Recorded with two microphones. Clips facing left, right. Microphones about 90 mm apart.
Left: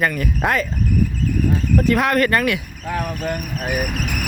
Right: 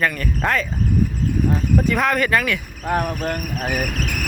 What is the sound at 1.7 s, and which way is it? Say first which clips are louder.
Speech: left 3 dB; centre (ahead or behind).